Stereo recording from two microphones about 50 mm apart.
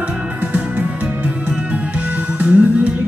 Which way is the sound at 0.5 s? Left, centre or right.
Right.